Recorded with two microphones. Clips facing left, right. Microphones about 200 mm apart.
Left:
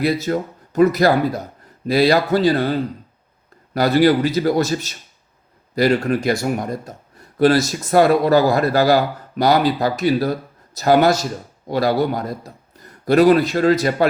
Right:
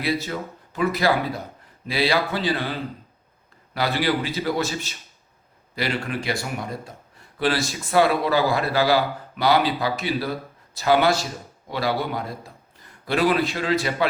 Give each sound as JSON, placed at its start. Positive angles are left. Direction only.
{"t": 0.0, "sound": "speech", "side_deg": 45}
{"t": 3.8, "sound": "a man's voice", "side_deg": 45}